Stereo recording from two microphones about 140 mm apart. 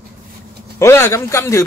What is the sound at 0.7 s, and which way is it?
Speech, 20° left (ahead or behind).